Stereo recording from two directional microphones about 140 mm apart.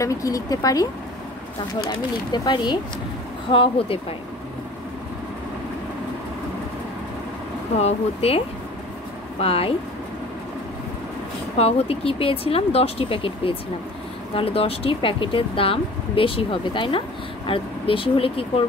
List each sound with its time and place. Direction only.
0.0 s speech: 25° left (ahead or behind)
2.3 s speech: 30° left (ahead or behind)
7.7 s speech: 45° left (ahead or behind)
9.4 s speech: 45° left (ahead or behind)
11.5 s speech: 45° left (ahead or behind)